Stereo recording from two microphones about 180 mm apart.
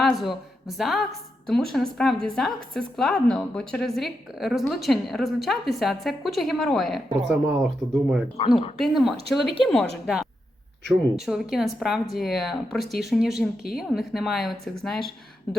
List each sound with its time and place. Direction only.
0.0 s a woman's voice: centre (ahead or behind)